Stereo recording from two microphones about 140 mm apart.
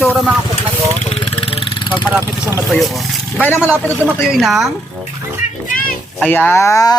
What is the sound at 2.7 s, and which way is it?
Speech, centre (ahead or behind).